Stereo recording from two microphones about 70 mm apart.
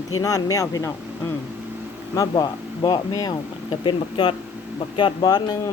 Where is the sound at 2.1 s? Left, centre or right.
Left.